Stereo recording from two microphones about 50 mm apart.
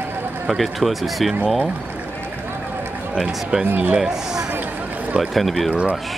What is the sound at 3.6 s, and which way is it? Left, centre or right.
Speech, right.